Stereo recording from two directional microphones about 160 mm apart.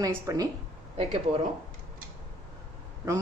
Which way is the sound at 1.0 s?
35° right (ahead or behind).